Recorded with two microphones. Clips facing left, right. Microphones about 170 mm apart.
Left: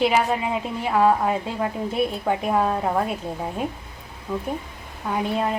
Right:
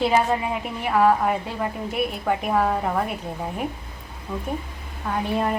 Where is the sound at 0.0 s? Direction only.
15° left (ahead or behind).